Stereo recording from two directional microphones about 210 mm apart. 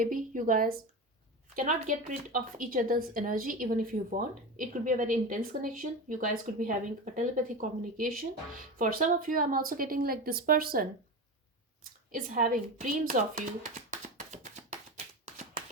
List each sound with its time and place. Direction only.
0.0 s a woman's voice: 40° right (ahead or behind)